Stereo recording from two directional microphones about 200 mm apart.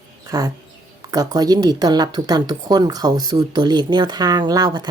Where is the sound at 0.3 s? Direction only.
20° right (ahead or behind).